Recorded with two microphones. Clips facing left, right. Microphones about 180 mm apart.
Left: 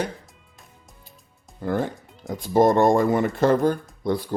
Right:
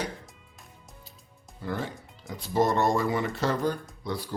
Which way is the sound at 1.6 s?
50° left (ahead or behind).